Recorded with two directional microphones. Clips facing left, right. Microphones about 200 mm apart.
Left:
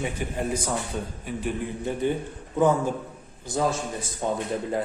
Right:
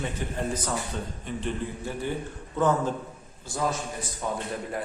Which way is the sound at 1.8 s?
20° left (ahead or behind).